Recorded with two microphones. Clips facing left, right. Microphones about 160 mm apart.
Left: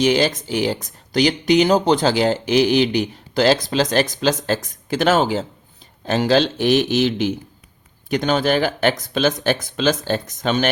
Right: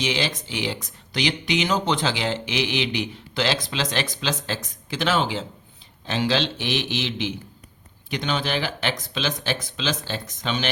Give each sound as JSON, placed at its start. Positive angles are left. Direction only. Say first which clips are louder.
{"t": 0.0, "sound": "speech", "louder": "left 9 dB", "side_deg": 45}